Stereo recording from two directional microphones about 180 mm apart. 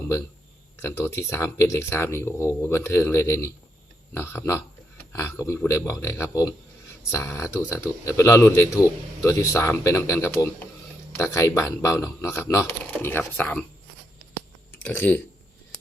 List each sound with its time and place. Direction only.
0.8 s speech: 15° left (ahead or behind)
14.8 s speech: 10° left (ahead or behind)